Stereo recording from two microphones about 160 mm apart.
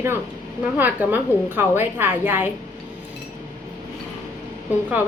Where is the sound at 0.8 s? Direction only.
10° right (ahead or behind).